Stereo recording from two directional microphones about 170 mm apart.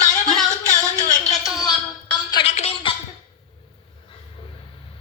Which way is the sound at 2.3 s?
40° left (ahead or behind).